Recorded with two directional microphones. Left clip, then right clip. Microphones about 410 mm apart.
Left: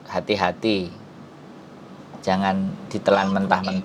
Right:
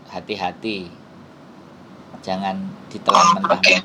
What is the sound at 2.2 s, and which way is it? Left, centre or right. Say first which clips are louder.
Speech: left 3 dB; left.